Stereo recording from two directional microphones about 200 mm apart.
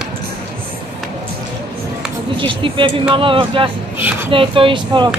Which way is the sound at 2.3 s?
25° right (ahead or behind).